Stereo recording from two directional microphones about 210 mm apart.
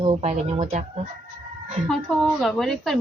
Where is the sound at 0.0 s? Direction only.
30° right (ahead or behind).